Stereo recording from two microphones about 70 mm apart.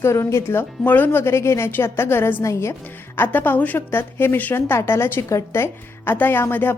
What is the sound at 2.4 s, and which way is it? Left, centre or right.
Speech, left.